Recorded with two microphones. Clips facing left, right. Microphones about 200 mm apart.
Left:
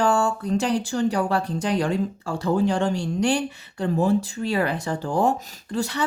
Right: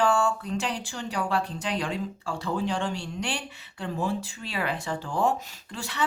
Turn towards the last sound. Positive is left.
turn(degrees=40)  # may be behind; listen again after turning